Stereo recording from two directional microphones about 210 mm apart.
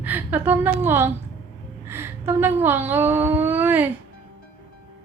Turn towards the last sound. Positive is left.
turn(degrees=-10)  # may be behind; listen again after turning